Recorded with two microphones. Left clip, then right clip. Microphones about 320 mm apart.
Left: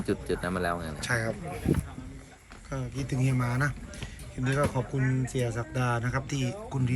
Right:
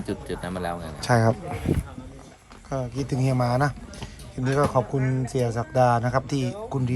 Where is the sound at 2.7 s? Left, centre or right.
Centre.